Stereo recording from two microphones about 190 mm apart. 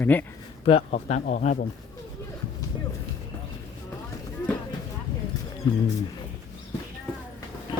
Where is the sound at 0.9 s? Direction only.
40° left (ahead or behind).